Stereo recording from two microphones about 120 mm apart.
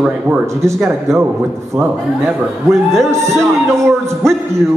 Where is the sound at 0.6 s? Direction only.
25° right (ahead or behind).